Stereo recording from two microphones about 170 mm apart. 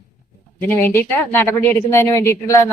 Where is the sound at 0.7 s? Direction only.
10° left (ahead or behind).